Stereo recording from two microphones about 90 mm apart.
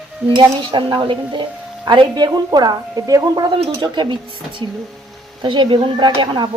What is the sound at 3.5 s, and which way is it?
Speech, 70° right (ahead or behind).